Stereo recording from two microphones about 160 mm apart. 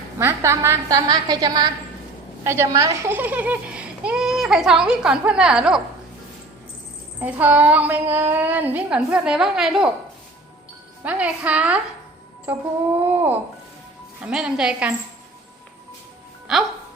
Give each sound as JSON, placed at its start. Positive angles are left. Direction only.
{"t": 0.2, "sound": "a woman's voice", "side_deg": -15}
{"t": 7.2, "sound": "speech", "side_deg": -10}
{"t": 11.0, "sound": "a woman's voice", "side_deg": -10}
{"t": 16.5, "sound": "a woman's voice", "side_deg": 0}